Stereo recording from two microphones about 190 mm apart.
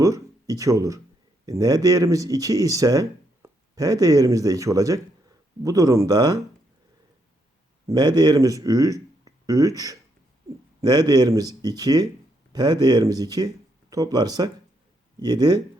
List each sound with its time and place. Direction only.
0.0 s speech: 20° right (ahead or behind)
7.9 s speech: 20° right (ahead or behind)